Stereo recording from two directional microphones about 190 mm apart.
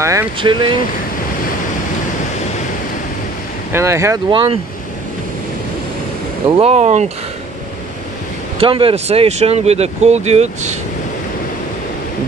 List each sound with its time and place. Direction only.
0.0 s speech: 15° right (ahead or behind)
0.4 s speech: 25° right (ahead or behind)
3.7 s speech: 15° right (ahead or behind)
4.3 s speech: 25° right (ahead or behind)
6.5 s speech: 35° right (ahead or behind)
8.5 s speech: 30° right (ahead or behind)